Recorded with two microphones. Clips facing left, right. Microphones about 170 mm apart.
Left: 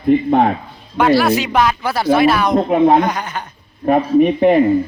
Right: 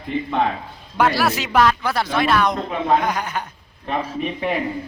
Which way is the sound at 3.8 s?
45° left (ahead or behind).